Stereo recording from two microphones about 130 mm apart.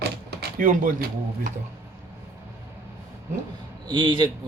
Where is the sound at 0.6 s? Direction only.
90° right.